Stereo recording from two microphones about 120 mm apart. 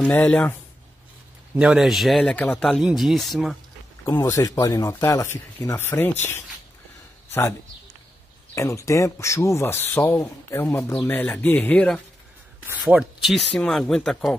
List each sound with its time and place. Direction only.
0.0 s speech: 15° left (ahead or behind)
1.5 s speech: 10° right (ahead or behind)
2.3 s speech: 15° left (ahead or behind)
2.8 s speech: 5° right (ahead or behind)
4.0 s speech: 20° left (ahead or behind)
8.5 s speech: 25° left (ahead or behind)
12.8 s speech: centre (ahead or behind)